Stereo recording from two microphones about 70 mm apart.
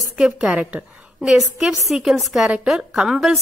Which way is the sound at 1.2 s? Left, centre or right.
Centre.